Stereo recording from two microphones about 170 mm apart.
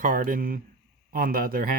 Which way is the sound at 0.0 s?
55° right (ahead or behind).